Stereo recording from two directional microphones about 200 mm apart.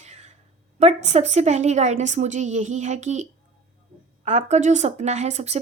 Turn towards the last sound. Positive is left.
turn(degrees=-35)  # may be behind; listen again after turning